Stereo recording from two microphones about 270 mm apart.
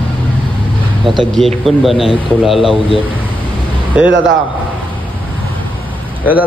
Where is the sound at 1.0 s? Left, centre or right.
Centre.